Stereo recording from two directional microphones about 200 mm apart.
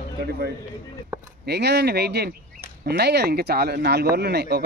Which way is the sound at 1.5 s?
55° right (ahead or behind).